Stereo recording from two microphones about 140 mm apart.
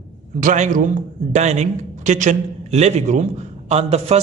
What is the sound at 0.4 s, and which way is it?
Speech, 70° right (ahead or behind).